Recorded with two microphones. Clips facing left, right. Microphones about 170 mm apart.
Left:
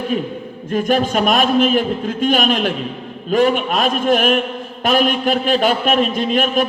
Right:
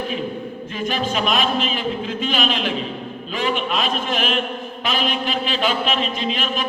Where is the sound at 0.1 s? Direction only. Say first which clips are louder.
Left 4 dB; 45° left (ahead or behind).